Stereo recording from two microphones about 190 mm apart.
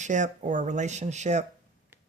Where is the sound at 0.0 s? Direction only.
40° right (ahead or behind).